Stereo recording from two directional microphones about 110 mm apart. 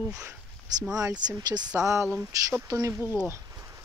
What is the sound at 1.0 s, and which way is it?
Speech, 40° right (ahead or behind).